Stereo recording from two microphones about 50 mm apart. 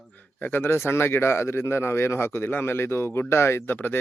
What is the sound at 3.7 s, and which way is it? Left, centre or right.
Speech, left.